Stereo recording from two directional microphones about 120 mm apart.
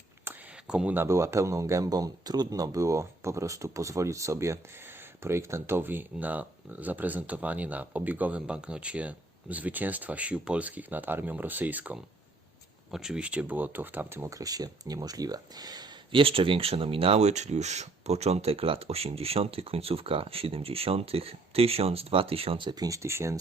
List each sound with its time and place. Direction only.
0.3 s speech: 10° right (ahead or behind); by 16.2 s 35° right (ahead or behind)
16.2 s speech: 50° right (ahead or behind); by 23.4 s 25° right (ahead or behind)